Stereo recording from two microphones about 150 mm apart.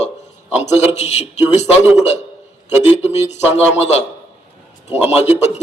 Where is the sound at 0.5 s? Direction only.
50° left (ahead or behind).